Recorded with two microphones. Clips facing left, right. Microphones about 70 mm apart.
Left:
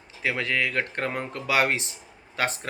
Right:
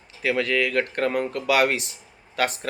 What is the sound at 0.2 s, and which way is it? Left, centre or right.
Speech, left.